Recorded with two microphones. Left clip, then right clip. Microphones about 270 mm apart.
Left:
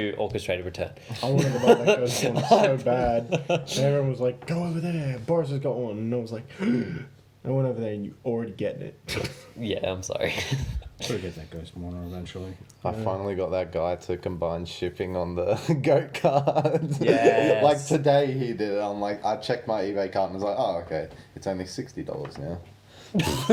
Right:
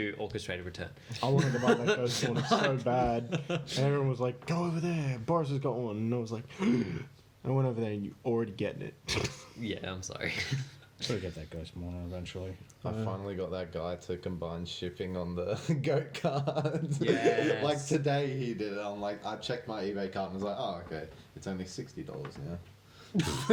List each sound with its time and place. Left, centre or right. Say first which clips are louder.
0.0 s speech: left 8 dB; left
2.9 s speech: left 6 dB; right
3.2 s speech: left 10 dB; left
4.3 s speech: left 5 dB; right
9.6 s speech: left 11 dB; left
12.8 s speech: left 10 dB; left
23.1 s speech: left 7 dB; left